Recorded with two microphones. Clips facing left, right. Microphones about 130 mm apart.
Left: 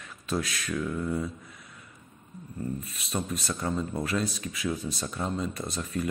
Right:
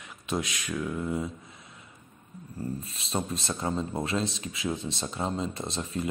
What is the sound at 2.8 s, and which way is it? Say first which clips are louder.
A man's voice: right 1 dB; 30° right (ahead or behind).